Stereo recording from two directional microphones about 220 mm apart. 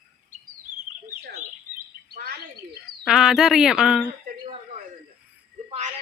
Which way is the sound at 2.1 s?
45° right (ahead or behind).